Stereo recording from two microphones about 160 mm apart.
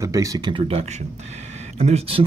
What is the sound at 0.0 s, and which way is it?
Speech, 20° right (ahead or behind).